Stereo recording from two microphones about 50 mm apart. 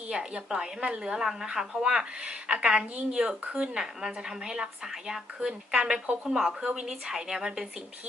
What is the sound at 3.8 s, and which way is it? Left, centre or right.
Speech, centre.